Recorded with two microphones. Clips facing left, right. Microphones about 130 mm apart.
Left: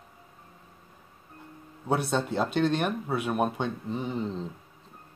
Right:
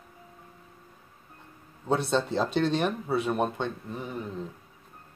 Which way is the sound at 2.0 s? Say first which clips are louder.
Right 1 dB; 5° left (ahead or behind).